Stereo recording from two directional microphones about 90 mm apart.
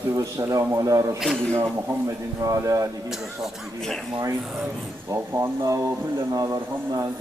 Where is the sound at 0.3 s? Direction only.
35° right (ahead or behind).